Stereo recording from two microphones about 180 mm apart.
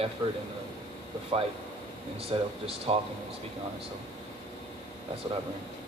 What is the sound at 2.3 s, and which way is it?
Speech, 30° right (ahead or behind).